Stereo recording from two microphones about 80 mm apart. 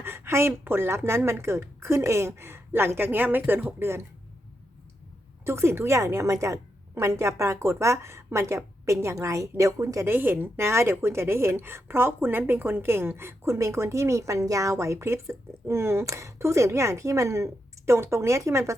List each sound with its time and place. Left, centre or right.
0.0 s a woman's voice: right
3.8 s a woman's voice: right
5.5 s a woman's voice: right
10.1 s a woman's voice: right